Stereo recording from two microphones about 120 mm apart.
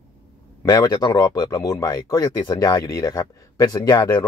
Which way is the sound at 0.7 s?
30° left (ahead or behind).